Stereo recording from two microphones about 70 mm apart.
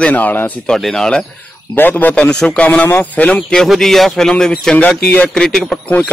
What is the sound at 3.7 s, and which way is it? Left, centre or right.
Speech, centre.